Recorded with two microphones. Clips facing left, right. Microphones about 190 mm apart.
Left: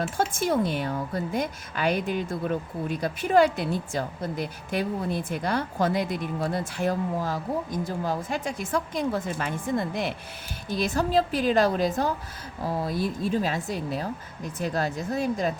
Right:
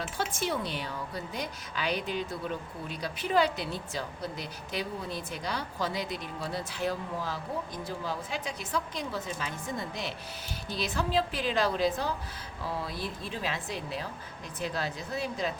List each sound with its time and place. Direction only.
0.0 s a woman's voice: 50° left (ahead or behind)